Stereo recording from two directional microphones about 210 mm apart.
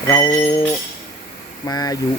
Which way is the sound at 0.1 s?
15° left (ahead or behind).